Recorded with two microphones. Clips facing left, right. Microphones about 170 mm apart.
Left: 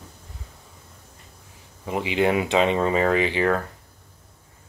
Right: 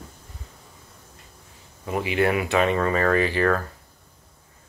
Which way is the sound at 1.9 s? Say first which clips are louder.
Left 1 dB; 20° left (ahead or behind).